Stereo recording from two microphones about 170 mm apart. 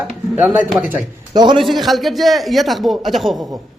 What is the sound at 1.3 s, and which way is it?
Speech, 25° right (ahead or behind).